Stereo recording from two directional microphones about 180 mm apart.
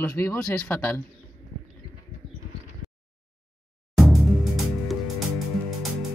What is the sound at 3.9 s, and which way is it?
Music, centre (ahead or behind).